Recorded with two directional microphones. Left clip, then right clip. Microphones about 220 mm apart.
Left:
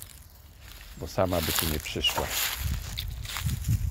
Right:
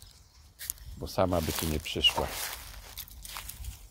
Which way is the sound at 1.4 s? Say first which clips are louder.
Left 4 dB; 15° right (ahead or behind).